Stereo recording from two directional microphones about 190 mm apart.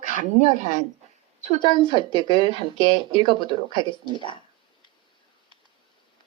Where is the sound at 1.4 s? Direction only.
25° left (ahead or behind).